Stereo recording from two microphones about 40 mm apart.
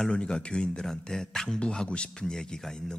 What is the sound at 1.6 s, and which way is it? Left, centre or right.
Speech, left.